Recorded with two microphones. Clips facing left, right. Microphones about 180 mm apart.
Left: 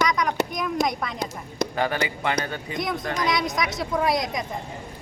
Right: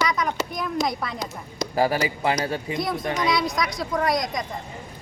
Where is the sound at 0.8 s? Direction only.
60° left (ahead or behind).